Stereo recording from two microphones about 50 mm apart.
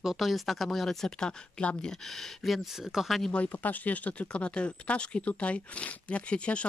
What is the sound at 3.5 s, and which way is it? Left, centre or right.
Speech, left.